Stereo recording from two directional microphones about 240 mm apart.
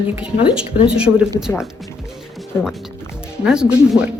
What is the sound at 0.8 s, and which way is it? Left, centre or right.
Speech, centre.